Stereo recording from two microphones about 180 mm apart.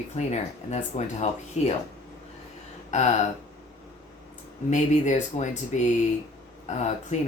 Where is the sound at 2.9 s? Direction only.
40° left (ahead or behind).